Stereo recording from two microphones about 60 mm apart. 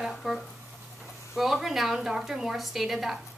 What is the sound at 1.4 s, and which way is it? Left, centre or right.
A woman's voice, centre.